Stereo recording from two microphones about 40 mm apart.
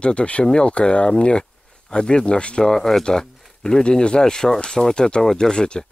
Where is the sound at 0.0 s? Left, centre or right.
Left.